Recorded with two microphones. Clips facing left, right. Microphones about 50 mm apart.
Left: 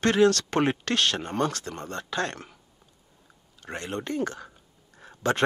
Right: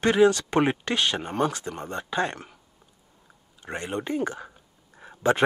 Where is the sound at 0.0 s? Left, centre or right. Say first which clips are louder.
Right 1 dB; centre.